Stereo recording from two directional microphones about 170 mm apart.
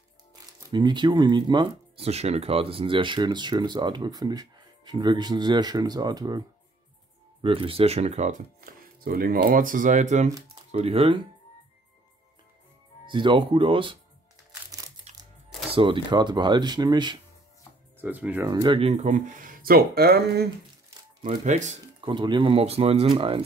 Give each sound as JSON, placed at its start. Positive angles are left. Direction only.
{"t": 0.3, "sound": "speech", "side_deg": -25}
{"t": 2.0, "sound": "speech", "side_deg": -40}
{"t": 7.4, "sound": "speech", "side_deg": -30}
{"t": 8.5, "sound": "speech", "side_deg": -60}
{"t": 13.1, "sound": "speech", "side_deg": -30}
{"t": 15.1, "sound": "music", "side_deg": -40}
{"t": 15.7, "sound": "speech", "side_deg": -30}
{"t": 17.9, "sound": "speech", "side_deg": -10}
{"t": 18.5, "sound": "speech", "side_deg": -25}
{"t": 18.8, "sound": "speech", "side_deg": -40}
{"t": 21.3, "sound": "speech", "side_deg": -45}
{"t": 22.0, "sound": "speech", "side_deg": -25}